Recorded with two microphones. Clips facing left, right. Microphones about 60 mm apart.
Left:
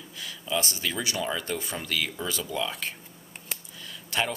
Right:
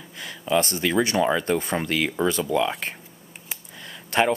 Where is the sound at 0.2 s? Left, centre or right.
Right.